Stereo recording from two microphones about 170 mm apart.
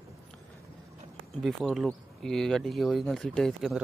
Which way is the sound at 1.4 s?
Centre (ahead or behind).